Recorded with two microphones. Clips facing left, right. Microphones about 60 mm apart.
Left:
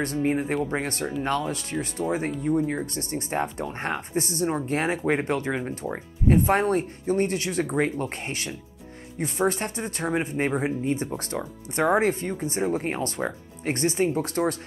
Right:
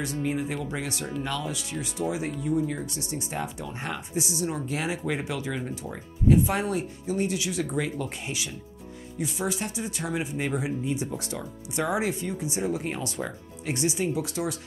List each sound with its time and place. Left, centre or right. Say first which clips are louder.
0.2 s speech: left 5 dB; left
5.5 s speech: left 4 dB; left
6.2 s speech: left 2 dB; left